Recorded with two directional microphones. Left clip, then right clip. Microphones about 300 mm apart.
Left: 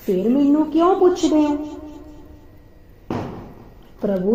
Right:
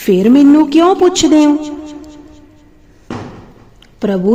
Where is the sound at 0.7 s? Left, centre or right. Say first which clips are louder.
Right 6 dB; right.